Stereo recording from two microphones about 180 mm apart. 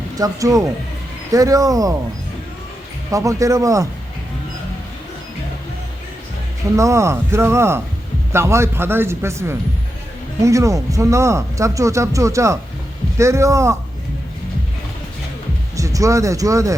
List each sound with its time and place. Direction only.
0.2 s speech: 20° right (ahead or behind)
3.1 s speech: 20° right (ahead or behind)
6.7 s speech: 15° right (ahead or behind)
15.7 s speech: 20° right (ahead or behind)